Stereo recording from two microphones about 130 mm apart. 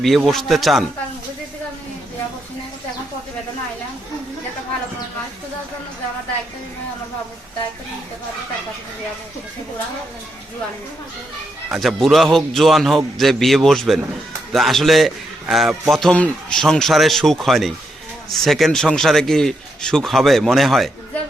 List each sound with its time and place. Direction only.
0.0 s a man's voice: centre (ahead or behind)
11.7 s a man's voice: centre (ahead or behind)